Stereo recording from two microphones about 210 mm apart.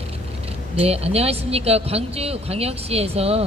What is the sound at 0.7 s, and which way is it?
Speech, 30° right (ahead or behind).